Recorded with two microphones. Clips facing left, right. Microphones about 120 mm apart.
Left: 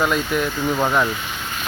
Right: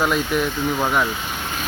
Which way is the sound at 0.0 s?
Centre (ahead or behind).